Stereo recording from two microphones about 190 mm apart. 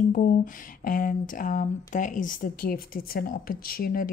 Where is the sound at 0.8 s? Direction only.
50° left (ahead or behind).